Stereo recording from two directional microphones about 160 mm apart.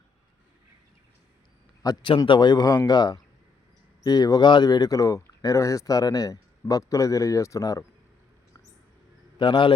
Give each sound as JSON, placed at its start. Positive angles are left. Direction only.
{"t": 1.8, "sound": "speech", "side_deg": 25}
{"t": 9.4, "sound": "a man's voice", "side_deg": 30}